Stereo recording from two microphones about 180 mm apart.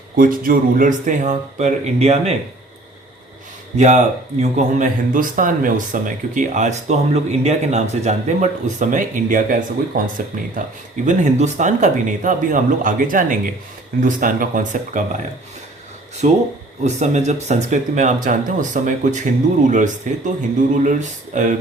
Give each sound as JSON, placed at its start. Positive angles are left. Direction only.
{"t": 0.2, "sound": "speech", "side_deg": -50}
{"t": 3.8, "sound": "speech", "side_deg": -40}
{"t": 16.8, "sound": "speech", "side_deg": -40}